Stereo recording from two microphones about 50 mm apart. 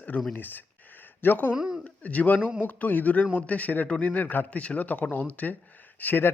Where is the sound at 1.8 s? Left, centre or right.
Left.